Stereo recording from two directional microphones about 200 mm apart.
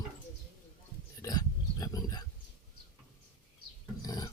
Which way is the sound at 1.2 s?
20° left (ahead or behind).